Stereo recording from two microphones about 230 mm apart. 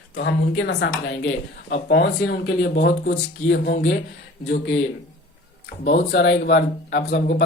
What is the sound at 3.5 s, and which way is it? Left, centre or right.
Speech, left.